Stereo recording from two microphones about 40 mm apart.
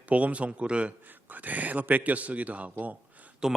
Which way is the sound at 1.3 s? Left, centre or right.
Right.